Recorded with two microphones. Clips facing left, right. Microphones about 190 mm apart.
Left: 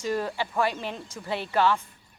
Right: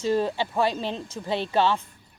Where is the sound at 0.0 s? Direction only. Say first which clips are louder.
Right 4 dB; 25° right (ahead or behind).